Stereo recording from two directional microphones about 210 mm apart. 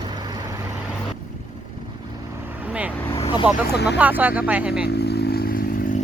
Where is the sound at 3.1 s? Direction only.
25° left (ahead or behind).